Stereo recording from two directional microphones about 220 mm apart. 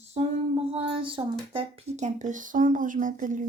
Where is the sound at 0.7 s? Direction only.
25° right (ahead or behind).